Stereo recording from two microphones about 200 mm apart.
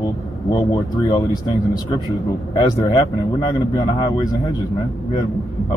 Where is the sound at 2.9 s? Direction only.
20° left (ahead or behind).